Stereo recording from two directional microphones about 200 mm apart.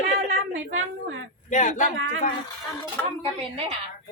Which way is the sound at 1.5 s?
40° left (ahead or behind).